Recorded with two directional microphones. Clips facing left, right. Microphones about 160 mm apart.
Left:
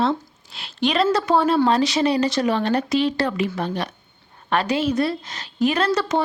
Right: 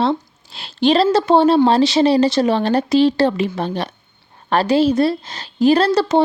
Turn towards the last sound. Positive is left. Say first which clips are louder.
# right 7 dB
turn(degrees=-30)  # may be behind; listen again after turning